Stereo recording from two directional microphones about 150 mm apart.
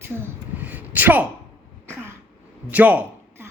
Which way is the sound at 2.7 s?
10° right (ahead or behind).